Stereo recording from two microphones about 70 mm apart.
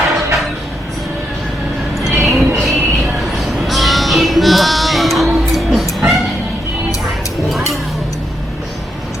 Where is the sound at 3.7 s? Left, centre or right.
Centre.